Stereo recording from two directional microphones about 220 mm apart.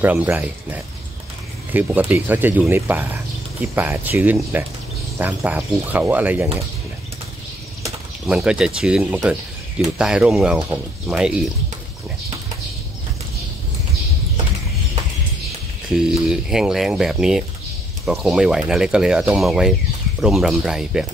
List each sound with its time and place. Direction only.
0.0 s speech: 5° right (ahead or behind)
7.8 s speech: 5° right (ahead or behind)
15.9 s speech: centre (ahead or behind)